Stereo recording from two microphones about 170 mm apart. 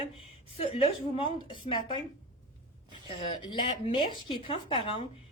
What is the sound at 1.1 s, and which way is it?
Speech, 30° left (ahead or behind).